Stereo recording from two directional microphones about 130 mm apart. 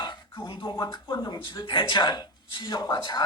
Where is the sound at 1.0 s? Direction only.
25° left (ahead or behind).